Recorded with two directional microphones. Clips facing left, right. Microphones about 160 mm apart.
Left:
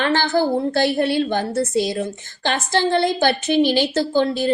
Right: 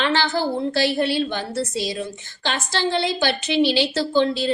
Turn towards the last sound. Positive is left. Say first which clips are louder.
# left 1 dB
turn(degrees=45)  # may be behind; listen again after turning